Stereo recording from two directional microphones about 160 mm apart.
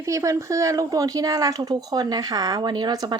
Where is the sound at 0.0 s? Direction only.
20° right (ahead or behind).